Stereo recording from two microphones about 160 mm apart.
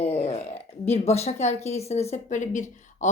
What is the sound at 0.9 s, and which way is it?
A woman's voice, 40° left (ahead or behind).